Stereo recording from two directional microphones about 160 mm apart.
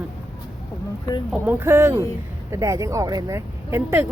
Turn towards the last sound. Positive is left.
turn(degrees=-15)  # may be behind; listen again after turning